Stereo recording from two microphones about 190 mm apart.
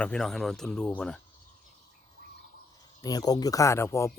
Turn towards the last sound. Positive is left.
turn(degrees=15)  # may be behind; listen again after turning